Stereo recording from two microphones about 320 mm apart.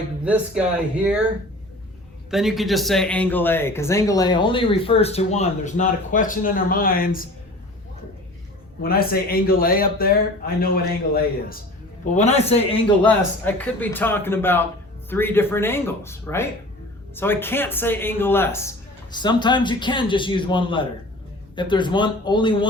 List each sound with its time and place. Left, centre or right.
0.3 s speech: centre
2.3 s speech: centre; by 7.3 s left
8.8 s speech: left
13.0 s speech: centre